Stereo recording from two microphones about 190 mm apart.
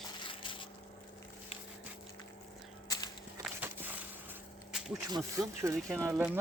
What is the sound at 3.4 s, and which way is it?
Walk, 10° right (ahead or behind).